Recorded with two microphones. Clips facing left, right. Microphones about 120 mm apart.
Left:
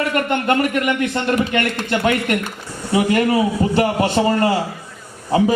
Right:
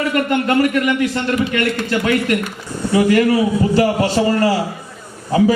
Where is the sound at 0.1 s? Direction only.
25° left (ahead or behind).